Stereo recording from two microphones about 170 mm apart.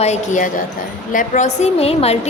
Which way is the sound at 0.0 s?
45° left (ahead or behind).